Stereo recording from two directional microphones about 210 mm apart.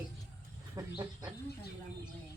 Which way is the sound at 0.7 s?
20° right (ahead or behind).